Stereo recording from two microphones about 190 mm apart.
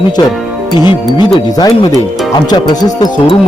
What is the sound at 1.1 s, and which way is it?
Speech, 20° left (ahead or behind).